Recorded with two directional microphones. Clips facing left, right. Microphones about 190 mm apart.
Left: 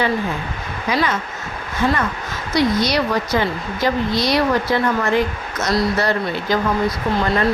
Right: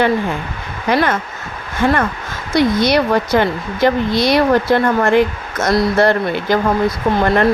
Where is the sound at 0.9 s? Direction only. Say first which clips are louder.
Right 5 dB; 55° right (ahead or behind).